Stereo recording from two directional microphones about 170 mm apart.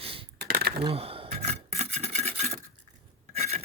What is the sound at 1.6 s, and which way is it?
Filing, 40° right (ahead or behind).